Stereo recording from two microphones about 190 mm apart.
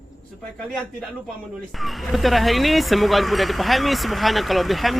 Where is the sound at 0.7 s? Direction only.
5° left (ahead or behind).